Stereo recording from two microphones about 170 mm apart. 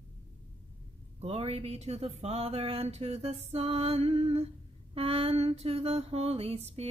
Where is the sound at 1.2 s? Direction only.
35° right (ahead or behind).